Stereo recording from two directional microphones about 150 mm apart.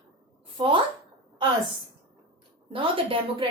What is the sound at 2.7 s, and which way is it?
Speech, 35° right (ahead or behind).